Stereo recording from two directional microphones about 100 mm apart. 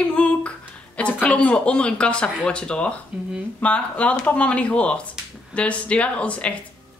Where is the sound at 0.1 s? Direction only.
10° left (ahead or behind).